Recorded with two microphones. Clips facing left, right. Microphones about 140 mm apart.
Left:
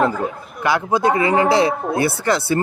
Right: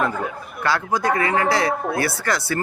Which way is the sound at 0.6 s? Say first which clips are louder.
Left 4 dB; 15° left (ahead or behind).